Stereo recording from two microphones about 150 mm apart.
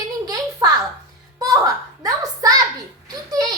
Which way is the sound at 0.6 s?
30° right (ahead or behind).